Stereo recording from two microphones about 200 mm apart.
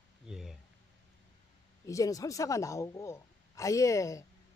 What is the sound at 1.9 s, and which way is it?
Speech, 15° left (ahead or behind).